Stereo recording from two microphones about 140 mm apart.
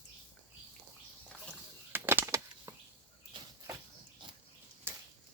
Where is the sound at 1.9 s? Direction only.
15° right (ahead or behind).